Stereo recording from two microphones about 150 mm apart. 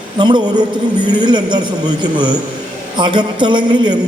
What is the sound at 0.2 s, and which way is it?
A man's voice, 30° right (ahead or behind).